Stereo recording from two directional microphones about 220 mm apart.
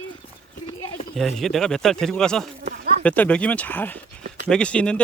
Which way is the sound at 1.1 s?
Centre (ahead or behind).